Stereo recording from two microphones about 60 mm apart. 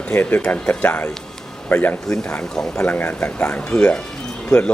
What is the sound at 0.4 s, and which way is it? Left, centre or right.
Speech, left.